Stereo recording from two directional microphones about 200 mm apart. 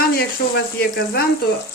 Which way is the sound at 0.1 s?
55° left (ahead or behind).